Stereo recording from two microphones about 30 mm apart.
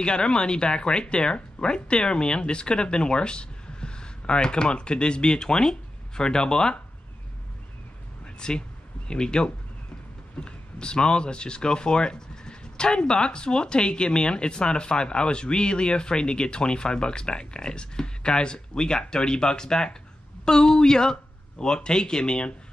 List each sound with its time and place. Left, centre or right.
0.0 s speech: left
8.4 s speech: left